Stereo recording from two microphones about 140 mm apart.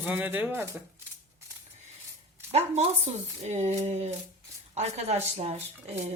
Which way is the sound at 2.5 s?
50° right (ahead or behind).